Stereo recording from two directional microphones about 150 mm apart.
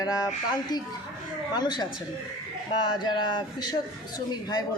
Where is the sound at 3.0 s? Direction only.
30° left (ahead or behind).